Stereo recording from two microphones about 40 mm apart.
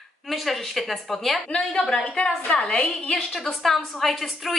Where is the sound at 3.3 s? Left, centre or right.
Centre.